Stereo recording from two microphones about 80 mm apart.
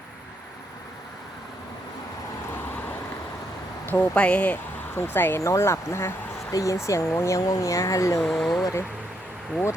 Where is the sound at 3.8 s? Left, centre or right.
Centre.